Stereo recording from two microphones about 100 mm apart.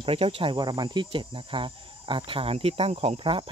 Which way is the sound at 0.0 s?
70° right (ahead or behind).